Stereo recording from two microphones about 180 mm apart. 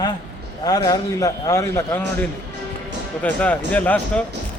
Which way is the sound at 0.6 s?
20° left (ahead or behind).